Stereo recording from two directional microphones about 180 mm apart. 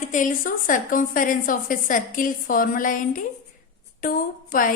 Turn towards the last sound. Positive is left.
turn(degrees=50)  # may be behind; listen again after turning